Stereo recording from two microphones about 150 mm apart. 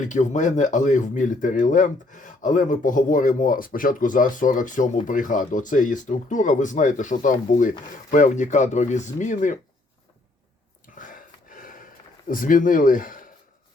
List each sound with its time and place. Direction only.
0.0 s speech: 55° left (ahead or behind)
10.9 s gasp: 65° left (ahead or behind)
12.3 s speech: 65° left (ahead or behind)